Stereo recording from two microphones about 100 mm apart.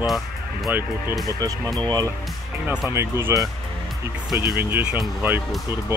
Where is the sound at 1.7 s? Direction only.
40° right (ahead or behind).